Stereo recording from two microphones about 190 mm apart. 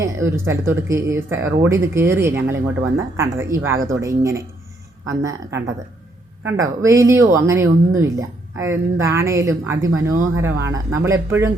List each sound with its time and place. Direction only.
0.0 s speech: 15° right (ahead or behind)